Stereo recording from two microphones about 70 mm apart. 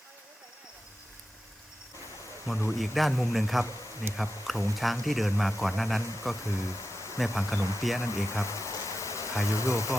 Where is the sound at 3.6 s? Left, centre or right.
Left.